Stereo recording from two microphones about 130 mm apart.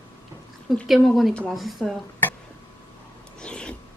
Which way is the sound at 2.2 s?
15° left (ahead or behind).